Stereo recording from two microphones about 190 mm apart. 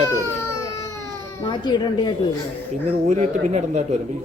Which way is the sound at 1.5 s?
25° left (ahead or behind).